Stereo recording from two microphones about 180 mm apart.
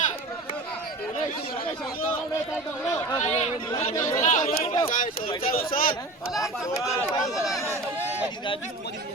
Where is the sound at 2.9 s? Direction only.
15° left (ahead or behind).